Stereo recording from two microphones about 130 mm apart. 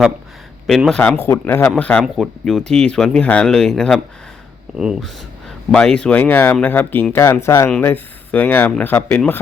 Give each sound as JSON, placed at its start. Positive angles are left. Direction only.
{"t": 0.7, "sound": "speech", "side_deg": 0}
{"t": 1.3, "sound": "speech", "side_deg": 15}